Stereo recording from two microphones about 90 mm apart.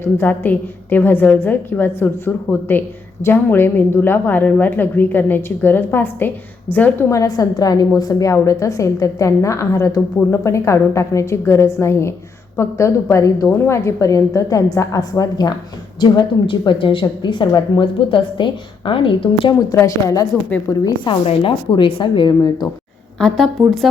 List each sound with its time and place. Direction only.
0.0 s a woman's voice: 25° left (ahead or behind)
7.1 s a woman's voice: 40° left (ahead or behind)
16.5 s a woman's voice: 75° left (ahead or behind)
19.7 s a woman's voice: 35° left (ahead or behind)
21.0 s a woman's voice: 65° left (ahead or behind)
23.1 s a woman's voice: 5° left (ahead or behind)